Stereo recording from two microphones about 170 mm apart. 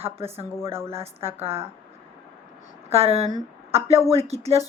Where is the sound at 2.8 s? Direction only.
35° right (ahead or behind).